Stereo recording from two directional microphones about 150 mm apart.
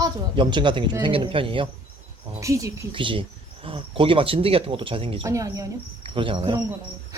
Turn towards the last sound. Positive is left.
turn(degrees=-35)  # may be behind; listen again after turning